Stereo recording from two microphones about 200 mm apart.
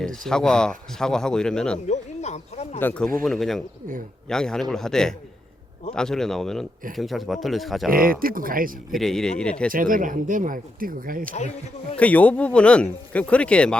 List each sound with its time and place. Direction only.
0.3 s speech: 5° left (ahead or behind)
1.9 s a sound: 35° left (ahead or behind)
2.7 s speech: 10° left (ahead or behind)
7.9 s speech: 45° right (ahead or behind)
8.9 s speech: centre (ahead or behind)
9.7 s speech: 45° right (ahead or behind)
11.5 s speech: 5° left (ahead or behind)